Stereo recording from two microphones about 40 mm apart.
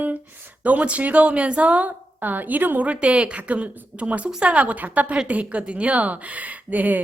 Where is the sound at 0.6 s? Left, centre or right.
Right.